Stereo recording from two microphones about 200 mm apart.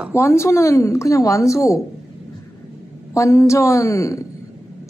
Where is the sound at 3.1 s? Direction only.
15° left (ahead or behind).